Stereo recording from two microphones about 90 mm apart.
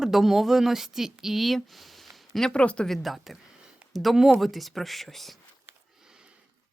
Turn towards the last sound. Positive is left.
turn(degrees=-10)  # may be behind; listen again after turning